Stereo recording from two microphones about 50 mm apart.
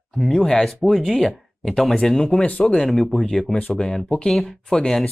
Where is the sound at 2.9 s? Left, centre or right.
Centre.